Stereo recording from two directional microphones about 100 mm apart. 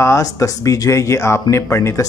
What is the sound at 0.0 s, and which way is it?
Speech, 30° left (ahead or behind).